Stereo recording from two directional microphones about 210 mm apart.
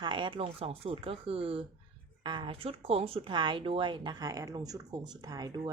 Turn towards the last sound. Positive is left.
turn(degrees=-20)  # may be behind; listen again after turning